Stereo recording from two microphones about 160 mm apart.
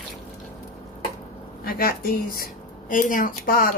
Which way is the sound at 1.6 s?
70° left (ahead or behind).